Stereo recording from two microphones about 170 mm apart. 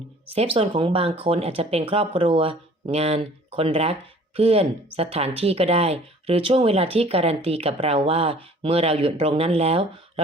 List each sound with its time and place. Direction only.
0.3 s speech: 35° right (ahead or behind)